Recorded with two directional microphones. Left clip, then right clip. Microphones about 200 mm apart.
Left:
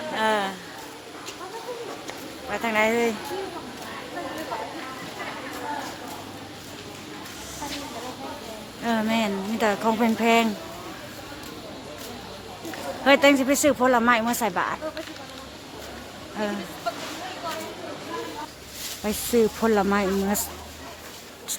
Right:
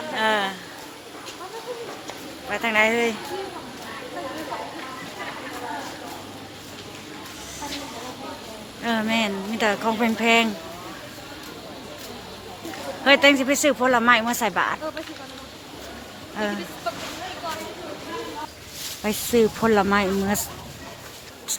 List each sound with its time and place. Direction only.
0.2 s a sound: 5° left (ahead or behind)
2.5 s speech: 5° left (ahead or behind)
8.8 s speech: 5° left (ahead or behind)
13.1 s speech: 10° left (ahead or behind)
19.0 s speech: centre (ahead or behind)